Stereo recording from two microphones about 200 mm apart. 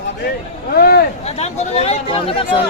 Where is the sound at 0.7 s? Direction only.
50° left (ahead or behind).